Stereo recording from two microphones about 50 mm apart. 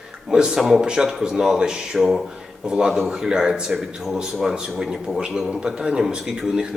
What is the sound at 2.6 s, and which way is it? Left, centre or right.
A man's voice, centre.